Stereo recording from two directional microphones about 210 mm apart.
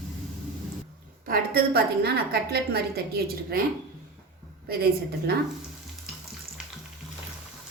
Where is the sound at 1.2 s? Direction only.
45° right (ahead or behind).